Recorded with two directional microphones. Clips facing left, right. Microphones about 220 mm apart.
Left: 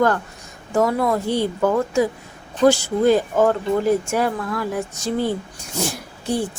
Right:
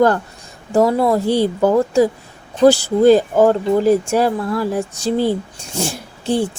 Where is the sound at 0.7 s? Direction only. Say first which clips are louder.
Right 5 dB; 30° right (ahead or behind).